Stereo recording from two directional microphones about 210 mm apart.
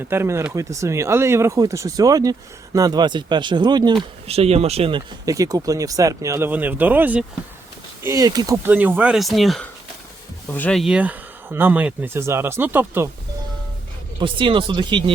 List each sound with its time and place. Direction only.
0.1 s speech: 10° right (ahead or behind)
14.2 s speech: 25° right (ahead or behind)